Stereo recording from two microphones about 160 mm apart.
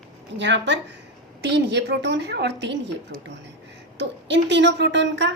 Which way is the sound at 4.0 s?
90° right.